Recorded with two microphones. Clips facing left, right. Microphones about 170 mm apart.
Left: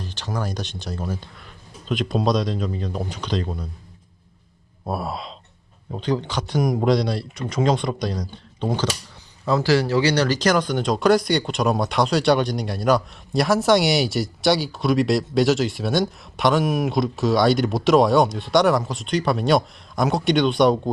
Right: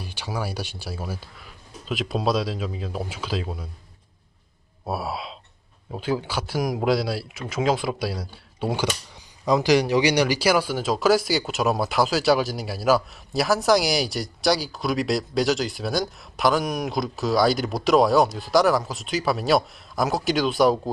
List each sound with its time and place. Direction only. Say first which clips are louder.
0.0 s speech: left 2 dB; 10° right (ahead or behind)
4.9 s speech: left 1 dB; 5° right (ahead or behind)